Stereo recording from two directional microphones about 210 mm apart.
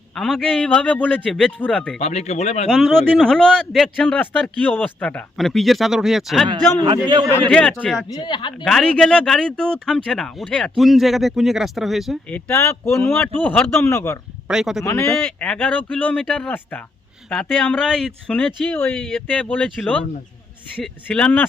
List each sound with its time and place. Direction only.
0.1 s speech: 5° left (ahead or behind)
2.0 s speech: 30° left (ahead or behind)
2.6 s speech: centre (ahead or behind)
6.5 s a man's voice: 20° right (ahead or behind)
7.5 s speech: 5° left (ahead or behind)
8.2 s speech: 20° left (ahead or behind)
8.6 s speech: 5° left (ahead or behind)
12.5 s a man's voice: 10° left (ahead or behind)
14.4 s a man's voice: centre (ahead or behind)